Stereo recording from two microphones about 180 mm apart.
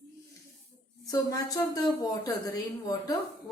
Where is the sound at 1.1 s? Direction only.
20° left (ahead or behind).